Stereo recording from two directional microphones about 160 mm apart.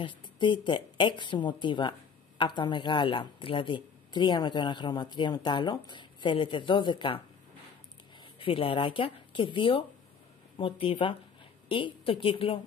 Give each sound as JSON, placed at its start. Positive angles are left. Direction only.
{"t": 0.0, "sound": "speech", "side_deg": 30}
{"t": 8.4, "sound": "speech", "side_deg": 35}